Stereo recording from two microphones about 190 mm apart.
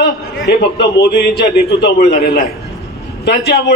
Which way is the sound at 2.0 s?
45° left (ahead or behind).